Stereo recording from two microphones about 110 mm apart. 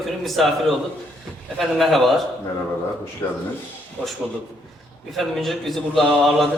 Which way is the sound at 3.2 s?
20° left (ahead or behind).